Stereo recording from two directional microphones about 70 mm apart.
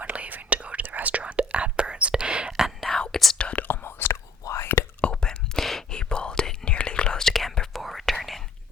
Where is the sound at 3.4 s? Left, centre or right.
Centre.